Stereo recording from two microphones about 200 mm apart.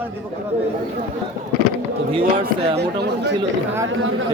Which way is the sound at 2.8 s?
55° right (ahead or behind).